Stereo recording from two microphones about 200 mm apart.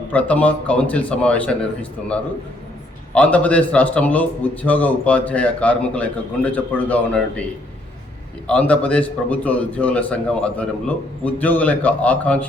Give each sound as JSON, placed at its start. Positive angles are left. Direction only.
{"t": 0.1, "sound": "a man's voice", "side_deg": 5}
{"t": 3.2, "sound": "a man's voice", "side_deg": 5}
{"t": 8.4, "sound": "a man's voice", "side_deg": 5}